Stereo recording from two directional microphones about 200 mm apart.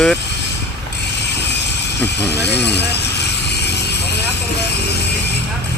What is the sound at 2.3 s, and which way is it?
Speech, 55° left (ahead or behind).